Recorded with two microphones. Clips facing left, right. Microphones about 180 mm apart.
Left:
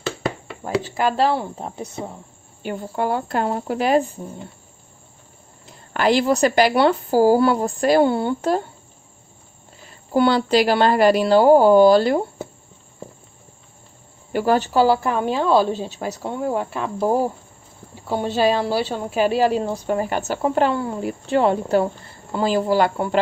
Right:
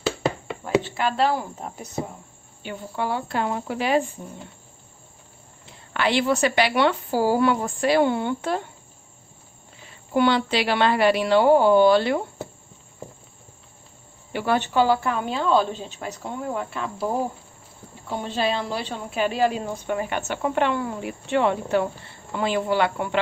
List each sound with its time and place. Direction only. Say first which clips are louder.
0.7 s speech: left 2 dB; 40° left (ahead or behind)
2.6 s speech: left 5 dB; 45° left (ahead or behind)
5.7 s speech: left 5 dB; 40° left (ahead or behind)
9.8 s speech: left 3 dB; 40° left (ahead or behind)
14.3 s speech: left 4 dB; 40° left (ahead or behind)